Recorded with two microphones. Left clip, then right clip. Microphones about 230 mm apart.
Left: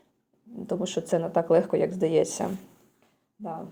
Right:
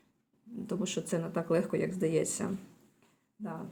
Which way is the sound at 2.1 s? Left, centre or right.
Right.